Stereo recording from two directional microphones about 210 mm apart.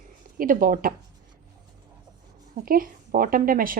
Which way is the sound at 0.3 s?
40° right (ahead or behind).